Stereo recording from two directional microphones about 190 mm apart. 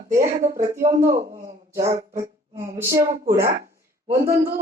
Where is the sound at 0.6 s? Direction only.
15° right (ahead or behind).